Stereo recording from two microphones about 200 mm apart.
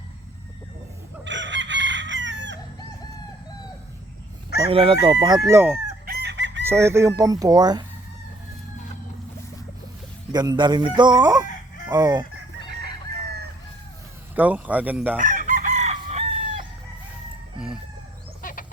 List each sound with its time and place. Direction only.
1.2 s chicken: 65° right (ahead or behind)
4.7 s speech: 25° right (ahead or behind); by 5.8 s 10° right (ahead or behind)
6.1 s chicken: 60° right (ahead or behind)
6.7 s speech: 15° right (ahead or behind)
10.3 s speech: 20° right (ahead or behind)
14.3 s speech: 10° right (ahead or behind)
15.2 s chicken: 40° right (ahead or behind)
18.4 s a sound: 40° left (ahead or behind)